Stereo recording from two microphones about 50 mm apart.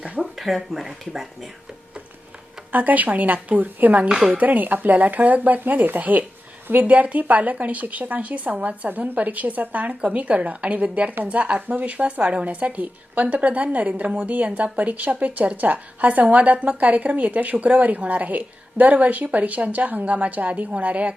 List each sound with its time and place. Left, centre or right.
0.3 s speech: centre
2.7 s speech: right
4.1 s speech: centre
4.4 s a woman's voice: right